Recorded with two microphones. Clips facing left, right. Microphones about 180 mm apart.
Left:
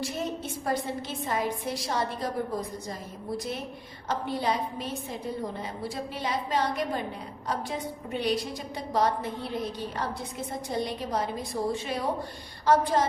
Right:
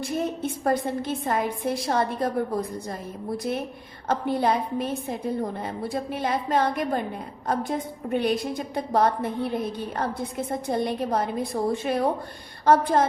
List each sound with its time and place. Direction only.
0.0 s a woman's voice: 50° right (ahead or behind)